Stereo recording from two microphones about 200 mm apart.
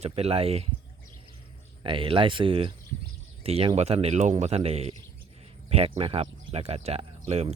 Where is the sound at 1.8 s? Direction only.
25° right (ahead or behind).